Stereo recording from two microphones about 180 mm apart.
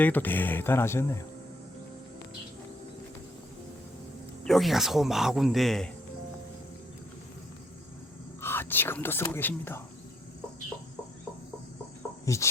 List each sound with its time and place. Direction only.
0.0 s speech: 10° left (ahead or behind)
4.4 s speech: centre (ahead or behind)
8.4 s speech: 10° left (ahead or behind)
12.2 s chicken: 15° left (ahead or behind)